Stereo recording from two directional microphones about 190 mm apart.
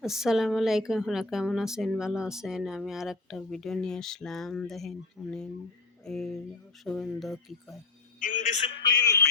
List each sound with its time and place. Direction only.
0.0 s a woman's voice: centre (ahead or behind)
8.2 s a man's voice: 45° left (ahead or behind)
8.8 s a sound: 20° left (ahead or behind)